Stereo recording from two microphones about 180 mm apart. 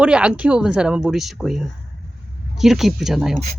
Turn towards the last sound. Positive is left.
turn(degrees=0)  # may be behind; listen again after turning